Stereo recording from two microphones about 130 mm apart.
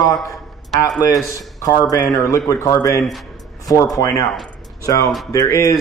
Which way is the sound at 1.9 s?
20° left (ahead or behind).